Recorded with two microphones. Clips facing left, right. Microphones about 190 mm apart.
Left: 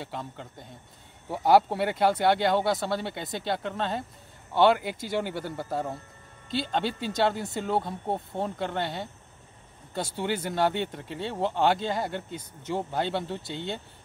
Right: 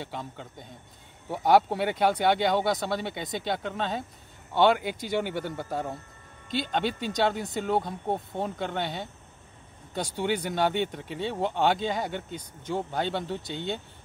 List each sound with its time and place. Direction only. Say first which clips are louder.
0.0 s speech: even; centre (ahead or behind)